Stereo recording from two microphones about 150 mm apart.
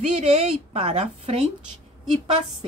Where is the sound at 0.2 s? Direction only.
45° right (ahead or behind).